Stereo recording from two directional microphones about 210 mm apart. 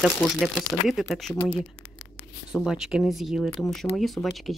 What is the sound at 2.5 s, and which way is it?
Speech, centre (ahead or behind).